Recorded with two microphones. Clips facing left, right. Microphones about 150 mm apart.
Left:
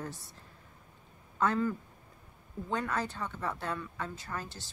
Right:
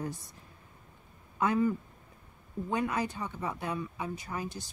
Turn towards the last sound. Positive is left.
turn(degrees=-15)  # may be behind; listen again after turning